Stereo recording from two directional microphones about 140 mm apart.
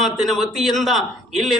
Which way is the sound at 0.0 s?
Centre (ahead or behind).